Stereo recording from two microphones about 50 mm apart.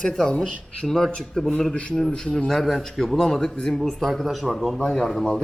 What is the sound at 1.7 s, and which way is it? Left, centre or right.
Speech, left.